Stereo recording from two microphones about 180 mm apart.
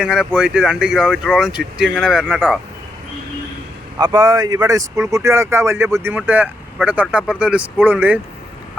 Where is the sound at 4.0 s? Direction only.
20° right (ahead or behind).